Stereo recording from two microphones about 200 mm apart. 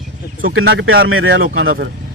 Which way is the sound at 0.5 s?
60° right (ahead or behind).